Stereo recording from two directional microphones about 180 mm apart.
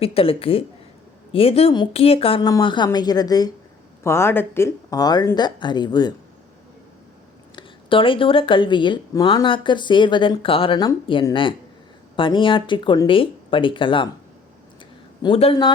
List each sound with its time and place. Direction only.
0.0 s speech: 30° left (ahead or behind)
7.5 s speech: 30° left (ahead or behind)
15.2 s speech: 30° left (ahead or behind)